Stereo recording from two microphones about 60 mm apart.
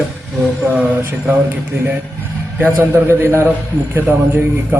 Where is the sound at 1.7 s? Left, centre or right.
Right.